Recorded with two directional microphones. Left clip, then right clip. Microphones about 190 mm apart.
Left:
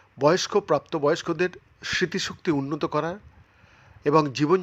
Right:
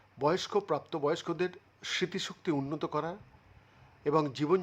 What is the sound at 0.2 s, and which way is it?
Speech, 15° left (ahead or behind).